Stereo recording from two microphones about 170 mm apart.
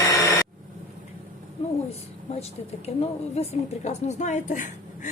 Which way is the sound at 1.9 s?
40° left (ahead or behind).